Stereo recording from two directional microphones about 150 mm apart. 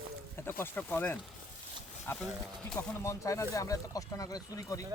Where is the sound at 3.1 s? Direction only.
20° left (ahead or behind).